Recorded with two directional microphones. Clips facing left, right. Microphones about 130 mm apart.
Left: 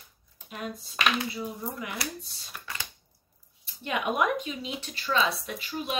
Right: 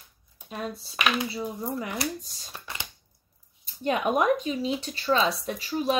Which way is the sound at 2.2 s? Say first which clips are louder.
Right 2 dB; 40° right (ahead or behind).